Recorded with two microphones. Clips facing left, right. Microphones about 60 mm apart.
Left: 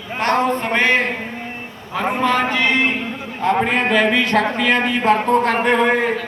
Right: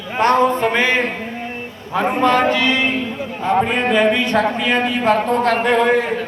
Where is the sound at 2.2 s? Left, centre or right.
Centre.